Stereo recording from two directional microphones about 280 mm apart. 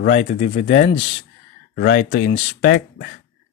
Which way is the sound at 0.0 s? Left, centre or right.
Left.